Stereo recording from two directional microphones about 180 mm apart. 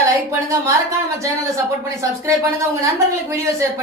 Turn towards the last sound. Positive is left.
turn(degrees=-15)  # may be behind; listen again after turning